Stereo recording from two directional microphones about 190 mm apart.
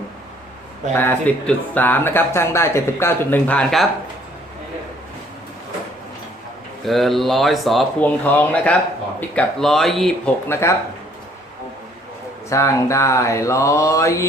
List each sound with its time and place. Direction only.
0.9 s speech: 10° left (ahead or behind)
6.8 s speech: centre (ahead or behind)
10.5 s speech: 15° left (ahead or behind)
12.5 s speech: 15° left (ahead or behind)